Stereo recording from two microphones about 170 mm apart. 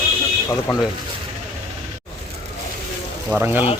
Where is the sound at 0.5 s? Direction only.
20° left (ahead or behind).